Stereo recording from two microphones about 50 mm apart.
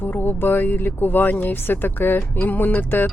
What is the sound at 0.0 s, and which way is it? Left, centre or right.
Speech, left.